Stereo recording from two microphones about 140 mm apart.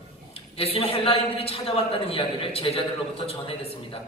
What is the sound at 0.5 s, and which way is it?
A man's voice, 45° left (ahead or behind).